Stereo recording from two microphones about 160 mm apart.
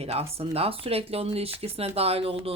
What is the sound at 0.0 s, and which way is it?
Speech, 40° right (ahead or behind).